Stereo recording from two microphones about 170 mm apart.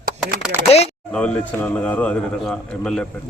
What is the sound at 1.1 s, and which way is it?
A man's voice, 5° left (ahead or behind).